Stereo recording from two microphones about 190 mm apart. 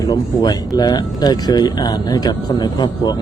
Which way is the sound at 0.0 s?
20° left (ahead or behind).